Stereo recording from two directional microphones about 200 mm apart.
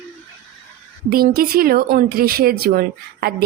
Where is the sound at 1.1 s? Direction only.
50° right (ahead or behind).